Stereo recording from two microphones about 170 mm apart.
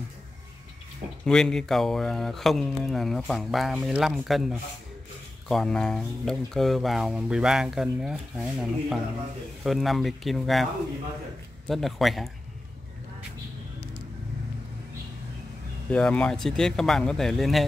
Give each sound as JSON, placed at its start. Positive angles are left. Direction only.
{"t": 1.2, "sound": "speech", "side_deg": 5}
{"t": 15.9, "sound": "speech", "side_deg": 5}